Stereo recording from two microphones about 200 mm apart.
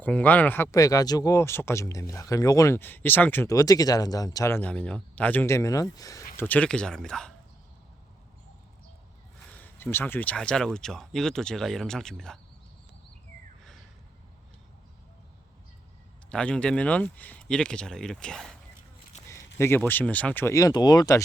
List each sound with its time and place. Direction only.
0.0 s speech: 10° left (ahead or behind)
9.5 s speech: 10° left (ahead or behind)
16.3 s speech: 5° left (ahead or behind)
19.1 s a sound: 35° left (ahead or behind)
19.5 s speech: 10° left (ahead or behind)